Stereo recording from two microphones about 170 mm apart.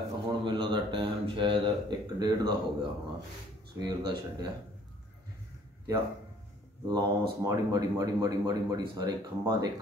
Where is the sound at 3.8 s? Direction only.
25° right (ahead or behind).